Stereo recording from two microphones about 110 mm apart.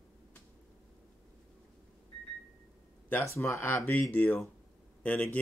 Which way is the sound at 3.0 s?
20° left (ahead or behind).